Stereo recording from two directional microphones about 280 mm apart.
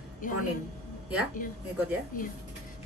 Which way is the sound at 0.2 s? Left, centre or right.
Left.